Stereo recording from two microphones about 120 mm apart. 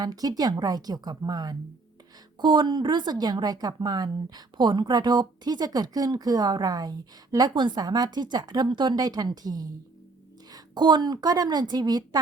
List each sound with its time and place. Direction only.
0.0 s a woman's voice: 35° right (ahead or behind)